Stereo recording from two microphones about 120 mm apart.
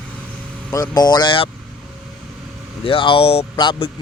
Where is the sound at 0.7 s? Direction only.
35° left (ahead or behind).